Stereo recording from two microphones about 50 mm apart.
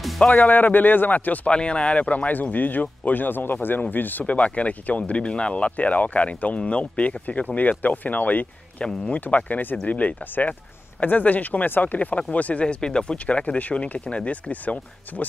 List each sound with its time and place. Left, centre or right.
0.3 s a man's voice: left
1.5 s a man's voice: left
8.8 s speech: centre
9.2 s a man's voice: left